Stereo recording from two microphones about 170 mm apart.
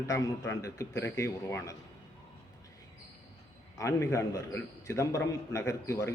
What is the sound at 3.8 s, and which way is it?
A man's voice, 15° left (ahead or behind).